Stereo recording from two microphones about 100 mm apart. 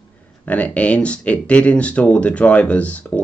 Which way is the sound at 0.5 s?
15° left (ahead or behind).